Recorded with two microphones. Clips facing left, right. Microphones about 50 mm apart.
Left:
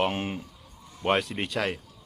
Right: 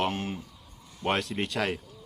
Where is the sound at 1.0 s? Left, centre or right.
Centre.